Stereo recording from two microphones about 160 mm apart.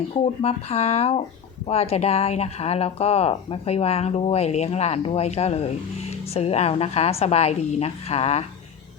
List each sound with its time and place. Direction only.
0.1 s speech: 40° left (ahead or behind)